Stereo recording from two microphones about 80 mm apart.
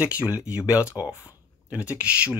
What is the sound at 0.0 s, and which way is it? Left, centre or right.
Speech, centre.